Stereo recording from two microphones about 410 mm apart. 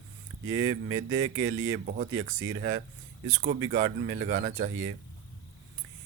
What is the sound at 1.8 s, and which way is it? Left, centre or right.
Speech, centre.